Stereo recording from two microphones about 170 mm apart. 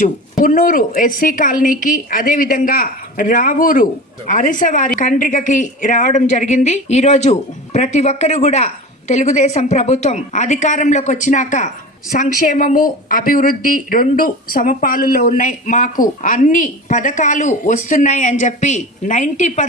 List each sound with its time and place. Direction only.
0.0 s speech: 50° left (ahead or behind)